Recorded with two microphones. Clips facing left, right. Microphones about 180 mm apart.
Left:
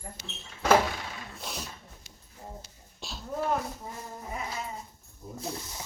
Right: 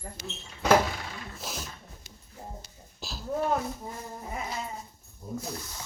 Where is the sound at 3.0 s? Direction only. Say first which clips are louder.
Right 1 dB; centre (ahead or behind).